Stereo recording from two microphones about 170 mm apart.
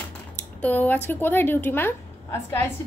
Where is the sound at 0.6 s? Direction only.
10° left (ahead or behind).